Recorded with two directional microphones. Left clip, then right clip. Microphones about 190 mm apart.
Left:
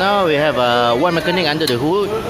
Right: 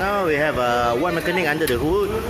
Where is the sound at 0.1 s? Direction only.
20° left (ahead or behind).